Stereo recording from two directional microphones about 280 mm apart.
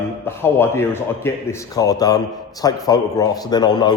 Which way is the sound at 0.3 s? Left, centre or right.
Centre.